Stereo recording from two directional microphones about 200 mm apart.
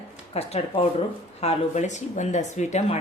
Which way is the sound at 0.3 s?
30° left (ahead or behind).